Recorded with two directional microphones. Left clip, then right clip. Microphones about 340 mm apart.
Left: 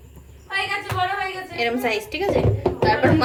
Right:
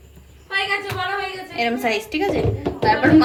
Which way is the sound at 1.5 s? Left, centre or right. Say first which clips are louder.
Right 2 dB; centre.